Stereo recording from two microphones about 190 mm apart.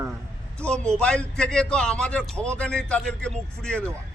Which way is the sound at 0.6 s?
5° left (ahead or behind).